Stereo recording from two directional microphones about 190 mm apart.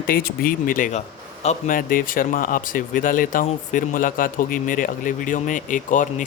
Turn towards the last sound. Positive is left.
turn(degrees=40)  # may be behind; listen again after turning